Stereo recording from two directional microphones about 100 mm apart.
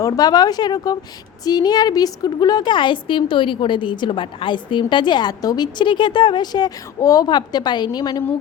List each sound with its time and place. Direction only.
0.0 s a woman's voice: 40° left (ahead or behind)